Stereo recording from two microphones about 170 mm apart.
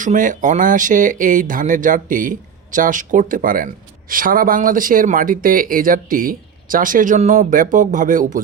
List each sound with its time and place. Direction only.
0.0 s speech: 50° right (ahead or behind)